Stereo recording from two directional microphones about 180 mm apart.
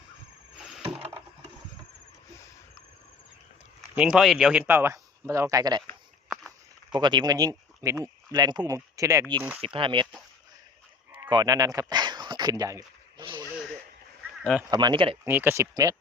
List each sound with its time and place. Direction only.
0.6 s mechanisms: 5° right (ahead or behind)
3.8 s speech: 5° right (ahead or behind); by 5.8 s 20° right (ahead or behind)
6.2 s walk: 5° right (ahead or behind)
6.9 s speech: 25° right (ahead or behind)
9.6 s speech: 30° right (ahead or behind)
11.3 s a sound: 20° right (ahead or behind)
14.7 s speech: 25° right (ahead or behind)
15.2 s speech: 10° right (ahead or behind)